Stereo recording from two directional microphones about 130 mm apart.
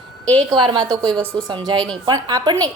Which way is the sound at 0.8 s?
5° left (ahead or behind).